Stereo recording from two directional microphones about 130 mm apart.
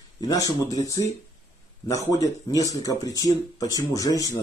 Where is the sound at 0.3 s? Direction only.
30° left (ahead or behind).